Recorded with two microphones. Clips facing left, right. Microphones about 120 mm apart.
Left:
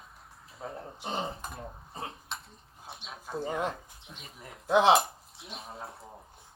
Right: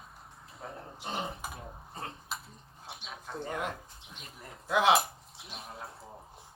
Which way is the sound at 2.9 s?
Centre (ahead or behind).